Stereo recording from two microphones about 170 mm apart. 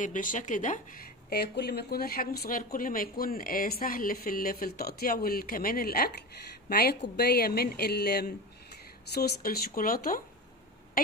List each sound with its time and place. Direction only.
0.0 s speech: 50° left (ahead or behind)